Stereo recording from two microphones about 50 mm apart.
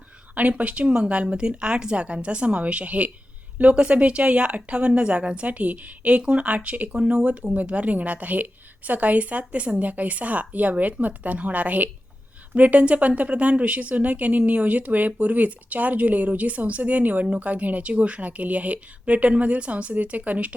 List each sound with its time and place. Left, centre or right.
0.3 s speech: right